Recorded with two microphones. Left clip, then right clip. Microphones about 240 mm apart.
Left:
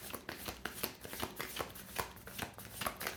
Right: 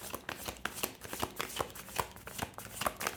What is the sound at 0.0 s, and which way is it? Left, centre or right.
Shuffling cards, right.